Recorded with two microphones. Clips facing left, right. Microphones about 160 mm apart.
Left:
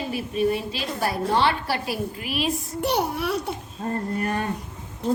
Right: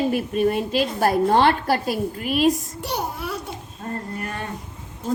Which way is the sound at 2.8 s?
65° left (ahead or behind).